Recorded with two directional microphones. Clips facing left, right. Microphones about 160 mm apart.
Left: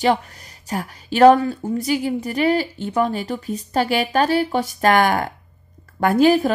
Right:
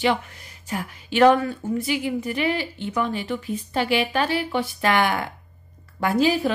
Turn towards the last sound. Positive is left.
turn(degrees=50)  # may be behind; listen again after turning